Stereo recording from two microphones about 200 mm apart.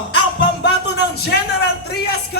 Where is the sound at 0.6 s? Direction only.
55° left (ahead or behind).